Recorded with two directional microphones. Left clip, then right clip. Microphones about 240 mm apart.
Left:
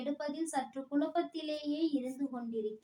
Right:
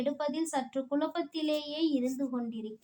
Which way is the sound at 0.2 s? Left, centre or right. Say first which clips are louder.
Right 4 dB; right.